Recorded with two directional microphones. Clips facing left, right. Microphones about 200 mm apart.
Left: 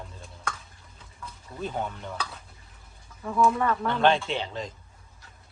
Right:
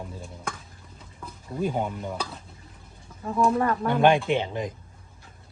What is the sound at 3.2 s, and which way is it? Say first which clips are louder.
Speech: right 1 dB; 35° right (ahead or behind).